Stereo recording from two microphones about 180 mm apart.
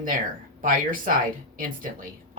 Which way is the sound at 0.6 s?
50° right (ahead or behind).